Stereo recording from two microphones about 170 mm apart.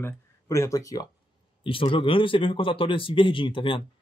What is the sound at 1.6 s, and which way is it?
Speech, 30° left (ahead or behind).